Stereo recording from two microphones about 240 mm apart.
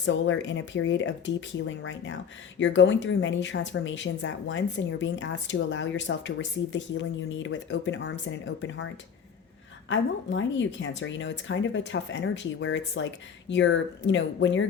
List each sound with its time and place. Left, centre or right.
0.0 s a woman's voice: left
9.9 s a woman's voice: left